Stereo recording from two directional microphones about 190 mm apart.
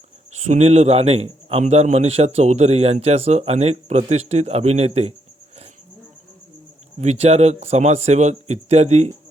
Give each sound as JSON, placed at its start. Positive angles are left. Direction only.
{"t": 0.3, "sound": "a man's voice", "side_deg": -35}
{"t": 7.0, "sound": "a man's voice", "side_deg": -35}